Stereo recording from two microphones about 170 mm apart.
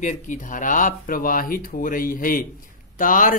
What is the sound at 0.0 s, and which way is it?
Speech, 50° left (ahead or behind).